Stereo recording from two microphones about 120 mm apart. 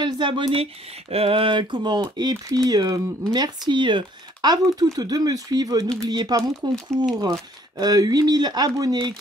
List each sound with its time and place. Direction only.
0.0 s speech: 40° right (ahead or behind)